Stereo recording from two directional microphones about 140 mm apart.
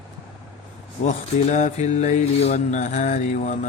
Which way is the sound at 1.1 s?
60° left (ahead or behind).